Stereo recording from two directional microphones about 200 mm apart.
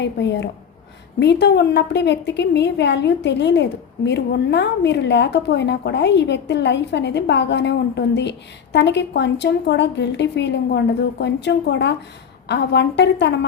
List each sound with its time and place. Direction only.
0.0 s a woman's voice: 60° left (ahead or behind)